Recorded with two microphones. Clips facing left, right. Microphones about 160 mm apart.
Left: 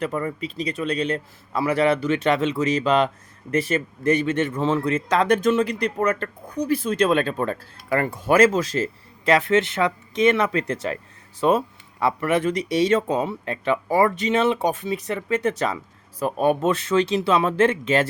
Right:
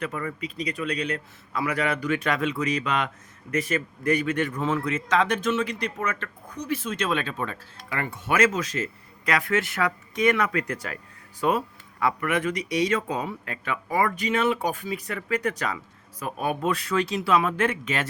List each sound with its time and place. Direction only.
0.0 s speech: 35° left (ahead or behind)